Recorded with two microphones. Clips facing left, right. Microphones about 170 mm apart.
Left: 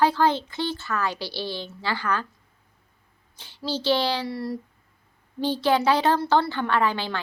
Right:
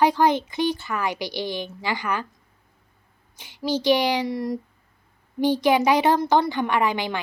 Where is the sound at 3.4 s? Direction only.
15° right (ahead or behind).